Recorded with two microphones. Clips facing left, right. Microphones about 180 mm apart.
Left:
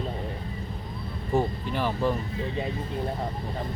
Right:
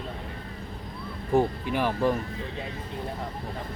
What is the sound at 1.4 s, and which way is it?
Speech, 10° right (ahead or behind).